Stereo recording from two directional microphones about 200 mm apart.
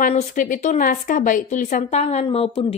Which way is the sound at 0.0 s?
40° left (ahead or behind).